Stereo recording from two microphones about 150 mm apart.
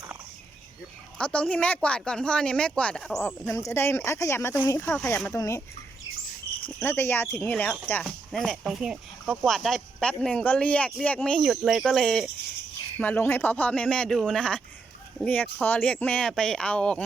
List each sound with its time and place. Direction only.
1.2 s speech: 10° left (ahead or behind)
3.2 s speech: 15° left (ahead or behind)
6.7 s speech: 15° left (ahead or behind)
8.0 s speech: centre (ahead or behind)